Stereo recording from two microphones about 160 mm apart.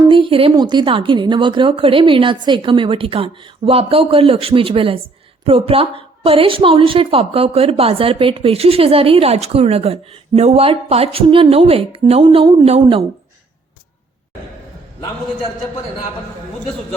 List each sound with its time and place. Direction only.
0.1 s a woman's voice: 35° right (ahead or behind)